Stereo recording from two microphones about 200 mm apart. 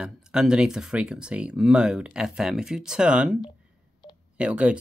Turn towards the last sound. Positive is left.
turn(degrees=-5)  # may be behind; listen again after turning